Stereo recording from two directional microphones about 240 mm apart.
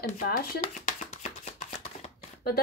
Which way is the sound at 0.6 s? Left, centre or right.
Left.